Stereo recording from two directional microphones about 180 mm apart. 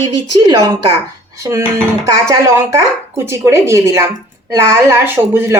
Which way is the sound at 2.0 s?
15° right (ahead or behind).